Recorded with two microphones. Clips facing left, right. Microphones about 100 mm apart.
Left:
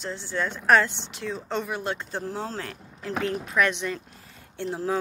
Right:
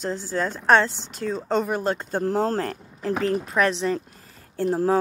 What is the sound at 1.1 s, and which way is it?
A woman's voice, 40° right (ahead or behind).